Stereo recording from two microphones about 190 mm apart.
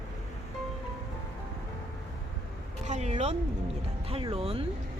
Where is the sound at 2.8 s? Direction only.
35° right (ahead or behind).